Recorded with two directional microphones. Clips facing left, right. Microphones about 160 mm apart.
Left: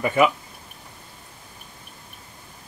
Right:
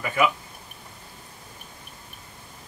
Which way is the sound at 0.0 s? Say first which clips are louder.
Left 4 dB; 25° left (ahead or behind).